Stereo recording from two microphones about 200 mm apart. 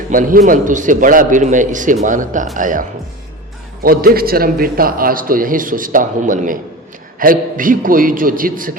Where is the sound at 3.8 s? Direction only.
45° right (ahead or behind).